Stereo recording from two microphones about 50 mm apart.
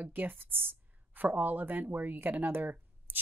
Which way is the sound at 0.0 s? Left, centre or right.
Right.